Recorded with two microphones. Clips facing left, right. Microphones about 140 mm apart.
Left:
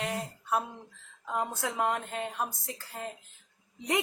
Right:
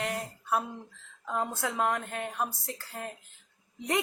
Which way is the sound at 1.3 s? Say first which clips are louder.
Right 1 dB; 20° left (ahead or behind).